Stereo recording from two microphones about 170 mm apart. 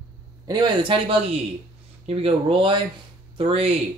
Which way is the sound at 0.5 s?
30° right (ahead or behind).